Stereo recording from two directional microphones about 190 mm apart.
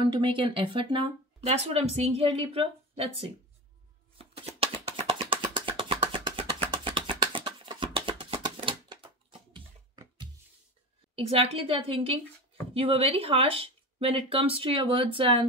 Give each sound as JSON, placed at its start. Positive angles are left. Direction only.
{"t": 0.0, "sound": "speech", "side_deg": -25}
{"t": 4.2, "sound": "a sound", "side_deg": -30}
{"t": 11.1, "sound": "speech", "side_deg": -30}